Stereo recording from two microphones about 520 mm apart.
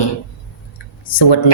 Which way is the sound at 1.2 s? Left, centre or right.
Left.